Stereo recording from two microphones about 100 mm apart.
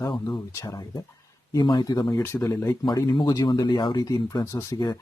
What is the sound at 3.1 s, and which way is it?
Speech, 45° left (ahead or behind).